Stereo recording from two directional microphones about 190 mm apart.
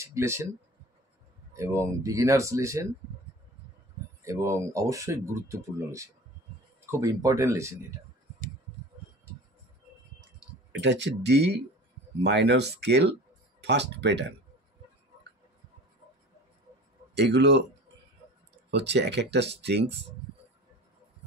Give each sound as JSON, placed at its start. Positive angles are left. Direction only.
{"t": 0.0, "sound": "speech", "side_deg": -15}
{"t": 1.6, "sound": "speech", "side_deg": -15}
{"t": 4.2, "sound": "speech", "side_deg": -15}
{"t": 10.7, "sound": "speech", "side_deg": -65}
{"t": 17.1, "sound": "speech", "side_deg": -65}
{"t": 18.7, "sound": "speech", "side_deg": -65}